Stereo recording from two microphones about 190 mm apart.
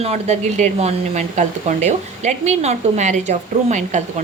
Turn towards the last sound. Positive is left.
turn(degrees=-35)  # may be behind; listen again after turning